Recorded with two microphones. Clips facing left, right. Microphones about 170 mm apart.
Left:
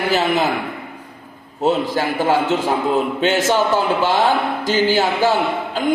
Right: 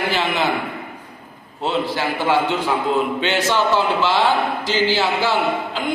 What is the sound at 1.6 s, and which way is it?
A man's voice, 45° left (ahead or behind).